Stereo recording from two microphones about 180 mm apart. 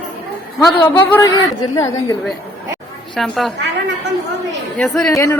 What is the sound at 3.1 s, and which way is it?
Speech, centre (ahead or behind).